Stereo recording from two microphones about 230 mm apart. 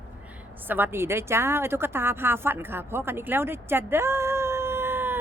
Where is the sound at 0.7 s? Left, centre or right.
Centre.